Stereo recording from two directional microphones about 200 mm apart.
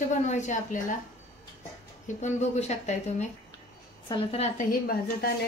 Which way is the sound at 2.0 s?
35° left (ahead or behind).